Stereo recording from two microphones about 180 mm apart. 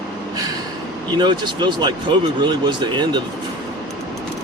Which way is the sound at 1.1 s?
25° right (ahead or behind).